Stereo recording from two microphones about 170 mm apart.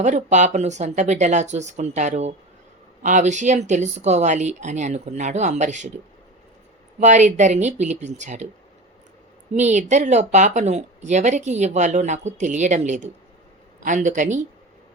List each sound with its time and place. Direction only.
0.0 s a woman's voice: 45° right (ahead or behind)
7.0 s a woman's voice: 45° right (ahead or behind)
9.6 s a woman's voice: 45° right (ahead or behind)